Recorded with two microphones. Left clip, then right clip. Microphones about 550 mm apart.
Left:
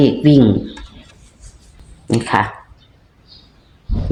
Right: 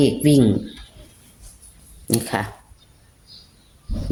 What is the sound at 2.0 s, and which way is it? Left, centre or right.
Speech, right.